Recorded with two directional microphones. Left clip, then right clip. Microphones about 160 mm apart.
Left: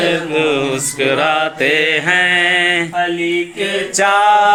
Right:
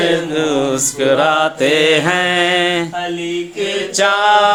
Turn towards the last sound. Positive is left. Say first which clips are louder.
# left 1 dB
turn(degrees=0)  # may be behind; listen again after turning